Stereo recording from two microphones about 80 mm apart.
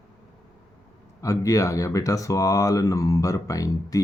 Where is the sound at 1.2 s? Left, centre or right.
Left.